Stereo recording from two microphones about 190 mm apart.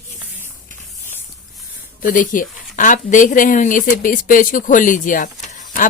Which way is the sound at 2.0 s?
45° left (ahead or behind).